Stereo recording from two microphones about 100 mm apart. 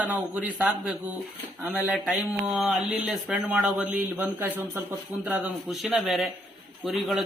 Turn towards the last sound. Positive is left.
turn(degrees=0)  # may be behind; listen again after turning